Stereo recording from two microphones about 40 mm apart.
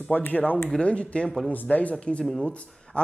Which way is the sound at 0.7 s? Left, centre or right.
Left.